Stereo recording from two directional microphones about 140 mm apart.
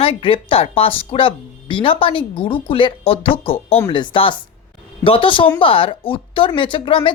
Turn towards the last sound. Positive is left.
turn(degrees=35)  # may be behind; listen again after turning